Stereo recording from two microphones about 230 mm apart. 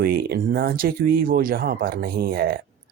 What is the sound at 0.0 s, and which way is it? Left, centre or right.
Speech, right.